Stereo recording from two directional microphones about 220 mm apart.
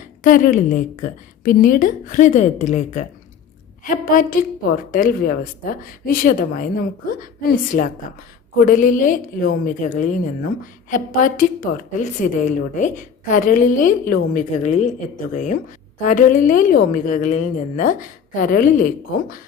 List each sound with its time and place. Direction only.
0.2 s a woman's voice: 35° left (ahead or behind)
8.5 s a woman's voice: 40° left (ahead or behind)